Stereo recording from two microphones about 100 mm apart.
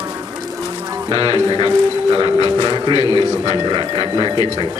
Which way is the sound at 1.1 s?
50° right (ahead or behind).